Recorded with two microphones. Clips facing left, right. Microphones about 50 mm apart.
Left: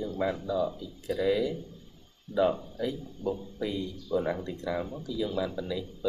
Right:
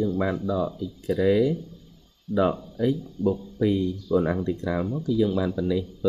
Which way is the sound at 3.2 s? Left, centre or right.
Left.